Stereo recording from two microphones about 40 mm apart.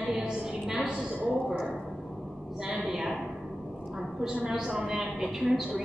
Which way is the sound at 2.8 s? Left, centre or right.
Centre.